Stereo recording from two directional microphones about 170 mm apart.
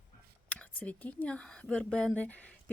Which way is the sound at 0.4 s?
10° left (ahead or behind).